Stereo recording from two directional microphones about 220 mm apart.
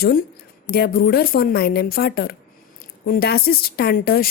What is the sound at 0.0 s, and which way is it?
A woman's voice, 40° left (ahead or behind).